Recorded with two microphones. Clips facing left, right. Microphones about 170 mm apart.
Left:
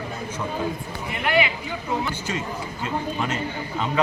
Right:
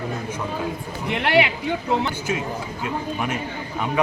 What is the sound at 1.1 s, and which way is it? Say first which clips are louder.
Speech: right 3 dB; 75° right (ahead or behind).